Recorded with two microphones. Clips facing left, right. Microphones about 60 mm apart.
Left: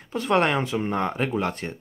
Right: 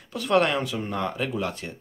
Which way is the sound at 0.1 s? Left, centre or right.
Left.